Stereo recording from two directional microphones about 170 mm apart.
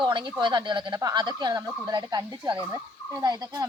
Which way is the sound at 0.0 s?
25° right (ahead or behind).